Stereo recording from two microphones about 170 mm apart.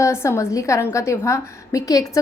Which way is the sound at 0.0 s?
15° left (ahead or behind).